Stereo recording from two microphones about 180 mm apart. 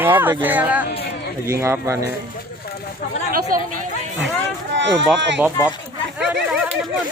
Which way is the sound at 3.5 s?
50° right (ahead or behind).